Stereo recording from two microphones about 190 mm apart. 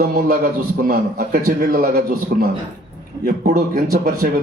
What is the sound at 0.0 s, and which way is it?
A man's voice, 45° right (ahead or behind).